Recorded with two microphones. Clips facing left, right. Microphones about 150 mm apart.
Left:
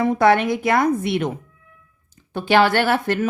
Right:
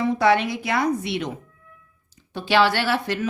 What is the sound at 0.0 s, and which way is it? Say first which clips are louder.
A woman's voice: left 3 dB; 50° left (ahead or behind).